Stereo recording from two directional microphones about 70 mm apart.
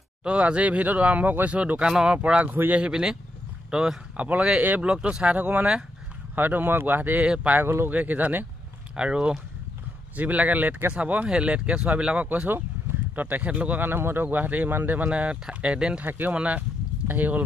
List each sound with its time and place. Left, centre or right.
0.2 s speech: centre
4.2 s speech: centre
7.6 s speech: right
7.9 s speech: right
8.9 s speech: centre
16.1 s speech: right